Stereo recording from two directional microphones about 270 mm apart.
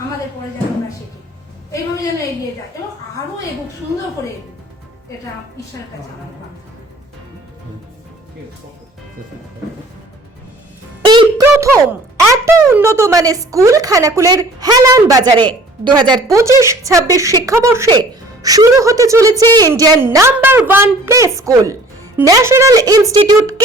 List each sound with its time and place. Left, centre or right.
11.0 s speech: centre